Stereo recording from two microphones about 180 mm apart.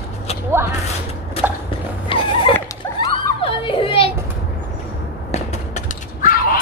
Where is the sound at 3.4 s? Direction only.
30° left (ahead or behind).